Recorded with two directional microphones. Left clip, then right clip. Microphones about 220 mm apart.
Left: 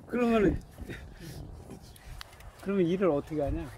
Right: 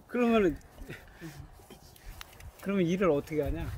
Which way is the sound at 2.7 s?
35° right (ahead or behind).